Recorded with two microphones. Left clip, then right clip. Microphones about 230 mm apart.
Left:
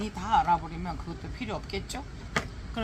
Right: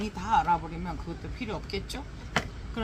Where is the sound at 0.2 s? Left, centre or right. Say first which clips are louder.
Left 1 dB; left.